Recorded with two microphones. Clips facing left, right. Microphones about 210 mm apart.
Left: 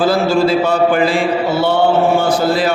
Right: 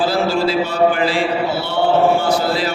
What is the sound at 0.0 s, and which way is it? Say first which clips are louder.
A man's voice: left 4 dB; 50° left (ahead or behind).